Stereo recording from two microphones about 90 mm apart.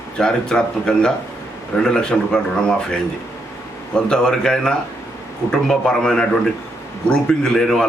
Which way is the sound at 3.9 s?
5° left (ahead or behind).